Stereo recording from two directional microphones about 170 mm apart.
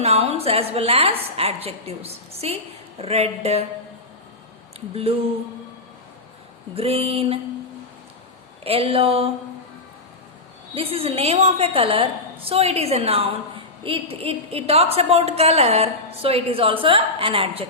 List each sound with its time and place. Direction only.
0.0 s a woman's voice: 35° right (ahead or behind)
4.9 s a woman's voice: 35° right (ahead or behind)
6.7 s a woman's voice: 35° right (ahead or behind)
8.6 s a woman's voice: 35° right (ahead or behind)
10.8 s a woman's voice: 35° right (ahead or behind)